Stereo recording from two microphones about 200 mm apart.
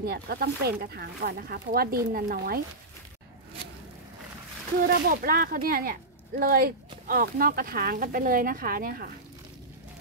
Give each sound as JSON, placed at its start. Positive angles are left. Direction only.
{"t": 0.0, "sound": "speech", "side_deg": -50}
{"t": 4.8, "sound": "speech", "side_deg": -45}